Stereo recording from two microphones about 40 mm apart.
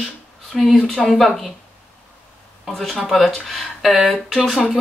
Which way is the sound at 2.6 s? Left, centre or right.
Centre.